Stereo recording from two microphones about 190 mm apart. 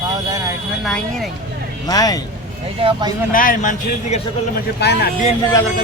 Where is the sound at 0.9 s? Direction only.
Centre (ahead or behind).